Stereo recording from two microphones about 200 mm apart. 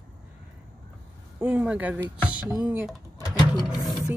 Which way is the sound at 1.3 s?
10° right (ahead or behind).